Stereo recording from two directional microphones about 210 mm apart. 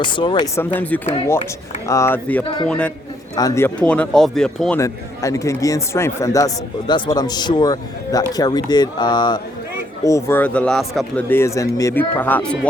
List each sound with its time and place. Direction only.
0.0 s a man's voice: 20° left (ahead or behind)
2.4 s a man's voice: 20° left (ahead or behind)
2.6 s speech: 5° left (ahead or behind)
4.8 s a man's voice: 15° left (ahead or behind)